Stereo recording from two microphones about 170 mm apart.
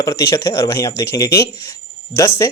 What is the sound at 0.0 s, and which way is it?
Speech, 20° left (ahead or behind).